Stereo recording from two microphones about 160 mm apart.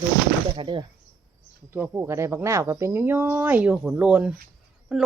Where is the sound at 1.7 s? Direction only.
15° right (ahead or behind).